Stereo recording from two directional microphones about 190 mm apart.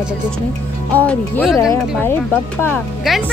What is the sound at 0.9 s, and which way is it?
Speech, 10° left (ahead or behind).